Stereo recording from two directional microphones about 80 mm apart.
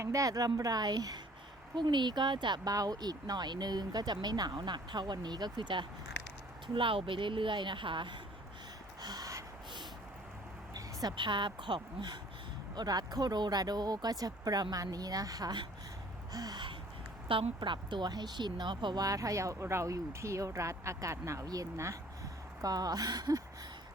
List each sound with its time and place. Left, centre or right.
0.0 s a woman's voice: right
1.7 s speech: right
2.6 s speech: right
6.7 s a woman's voice: right
9.0 s gasp: right
11.2 s speech: right
12.7 s a woman's voice: right
17.2 s speech: right
19.0 s speech: right